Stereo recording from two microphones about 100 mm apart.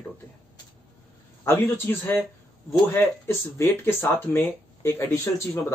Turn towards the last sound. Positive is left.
turn(degrees=25)  # may be behind; listen again after turning